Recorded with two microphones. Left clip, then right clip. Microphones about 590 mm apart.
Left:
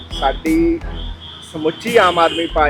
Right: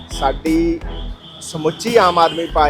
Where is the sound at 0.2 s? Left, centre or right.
Right.